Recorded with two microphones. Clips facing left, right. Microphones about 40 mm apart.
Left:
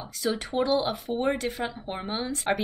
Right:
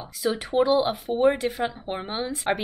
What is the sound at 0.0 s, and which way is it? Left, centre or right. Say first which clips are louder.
Speech: right 2 dB; centre.